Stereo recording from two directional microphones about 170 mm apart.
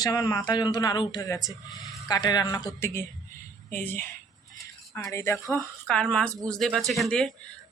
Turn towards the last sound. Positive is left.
turn(degrees=5)  # may be behind; listen again after turning